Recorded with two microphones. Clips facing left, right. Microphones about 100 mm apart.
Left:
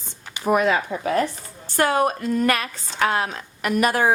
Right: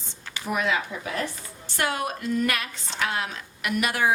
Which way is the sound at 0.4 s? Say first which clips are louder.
Left 7 dB; 45° left (ahead or behind).